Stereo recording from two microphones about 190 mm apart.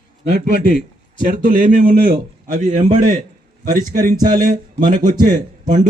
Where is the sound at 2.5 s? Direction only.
40° right (ahead or behind).